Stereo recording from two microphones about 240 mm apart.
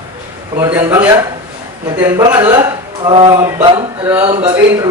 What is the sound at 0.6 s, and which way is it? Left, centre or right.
Speech, centre.